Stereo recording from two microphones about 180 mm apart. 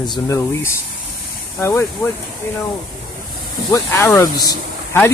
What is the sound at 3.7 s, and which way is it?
Speech, 15° left (ahead or behind).